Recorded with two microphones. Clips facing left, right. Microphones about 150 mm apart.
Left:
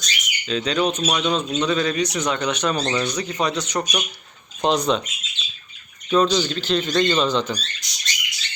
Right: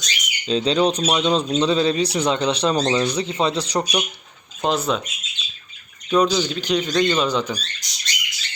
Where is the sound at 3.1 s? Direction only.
25° right (ahead or behind).